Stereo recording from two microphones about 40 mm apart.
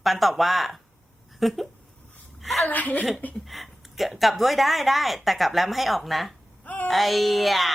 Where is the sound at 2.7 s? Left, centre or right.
Left.